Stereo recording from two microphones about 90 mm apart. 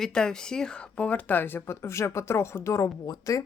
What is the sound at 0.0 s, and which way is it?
Speech, 5° left (ahead or behind).